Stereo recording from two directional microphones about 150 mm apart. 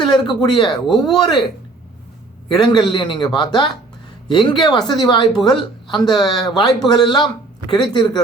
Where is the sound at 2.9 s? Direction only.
30° left (ahead or behind).